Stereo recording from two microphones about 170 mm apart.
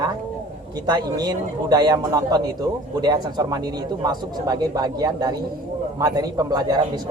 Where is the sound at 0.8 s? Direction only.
25° right (ahead or behind).